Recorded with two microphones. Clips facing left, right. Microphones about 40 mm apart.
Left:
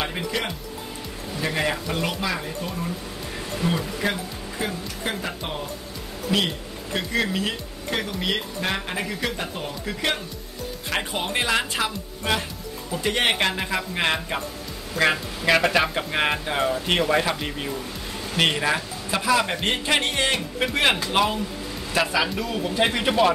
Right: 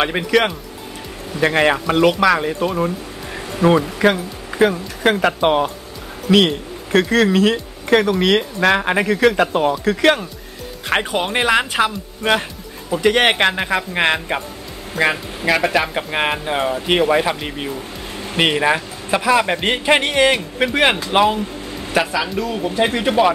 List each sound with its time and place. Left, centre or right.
0.0 s speech: right
2.1 s speech: right
3.6 s speech: right
10.9 s speech: right
15.4 s a man's voice: centre; by 21.4 s right
22.0 s speech: centre